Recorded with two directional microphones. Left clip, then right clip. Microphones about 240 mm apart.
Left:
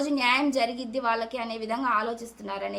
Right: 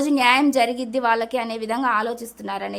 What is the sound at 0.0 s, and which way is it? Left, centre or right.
A woman's voice, right.